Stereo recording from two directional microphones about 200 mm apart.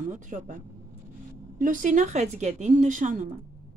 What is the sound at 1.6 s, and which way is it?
Speech, 40° right (ahead or behind).